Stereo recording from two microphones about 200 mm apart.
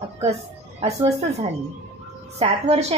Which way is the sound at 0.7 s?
30° right (ahead or behind).